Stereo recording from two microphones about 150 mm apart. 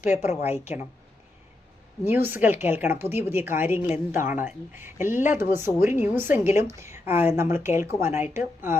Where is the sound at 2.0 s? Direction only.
15° right (ahead or behind).